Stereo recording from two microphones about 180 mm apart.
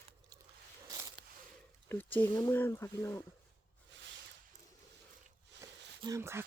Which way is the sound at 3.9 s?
85° right.